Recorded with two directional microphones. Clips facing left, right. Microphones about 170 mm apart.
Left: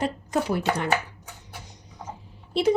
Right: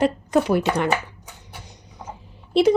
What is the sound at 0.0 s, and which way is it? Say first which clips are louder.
Speech: right 7 dB; 70° right (ahead or behind).